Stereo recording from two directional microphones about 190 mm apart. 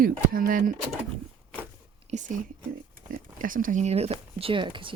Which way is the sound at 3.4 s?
45° right (ahead or behind).